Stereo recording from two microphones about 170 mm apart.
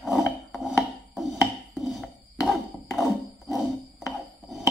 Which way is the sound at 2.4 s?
20° left (ahead or behind).